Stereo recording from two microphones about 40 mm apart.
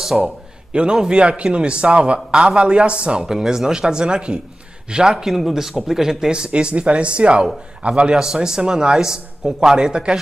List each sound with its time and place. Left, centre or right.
0.0 s a man's voice: centre
0.7 s a man's voice: right
3.2 s a man's voice: centre
6.3 s a man's voice: right